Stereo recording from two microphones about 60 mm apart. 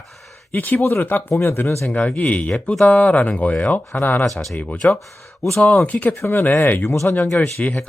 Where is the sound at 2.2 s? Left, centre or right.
Left.